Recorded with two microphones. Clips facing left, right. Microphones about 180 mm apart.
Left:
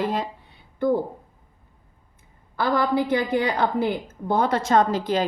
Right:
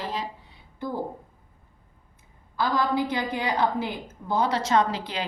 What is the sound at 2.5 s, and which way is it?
A woman's voice, 60° left (ahead or behind).